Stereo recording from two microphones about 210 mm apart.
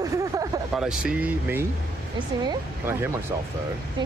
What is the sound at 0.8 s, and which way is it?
Speech, 5° right (ahead or behind).